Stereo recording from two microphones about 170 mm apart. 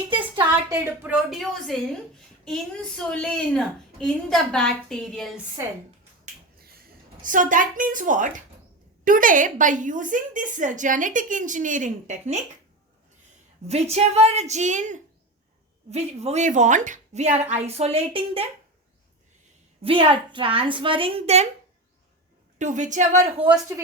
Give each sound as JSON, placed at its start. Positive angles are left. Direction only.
{"t": 0.7, "sound": "a woman's voice", "side_deg": -10}
{"t": 7.2, "sound": "a woman's voice", "side_deg": -50}
{"t": 13.7, "sound": "a woman's voice", "side_deg": -40}
{"t": 19.8, "sound": "a woman's voice", "side_deg": -30}
{"t": 22.5, "sound": "a woman's voice", "side_deg": -45}
{"t": 23.5, "sound": "speech", "side_deg": -15}